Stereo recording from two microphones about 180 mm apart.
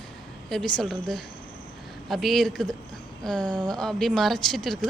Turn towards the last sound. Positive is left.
turn(degrees=0)  # may be behind; listen again after turning